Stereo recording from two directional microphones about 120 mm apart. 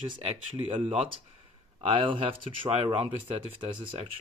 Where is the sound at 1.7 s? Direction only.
45° right (ahead or behind).